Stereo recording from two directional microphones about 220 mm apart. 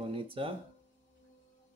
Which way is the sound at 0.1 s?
25° right (ahead or behind).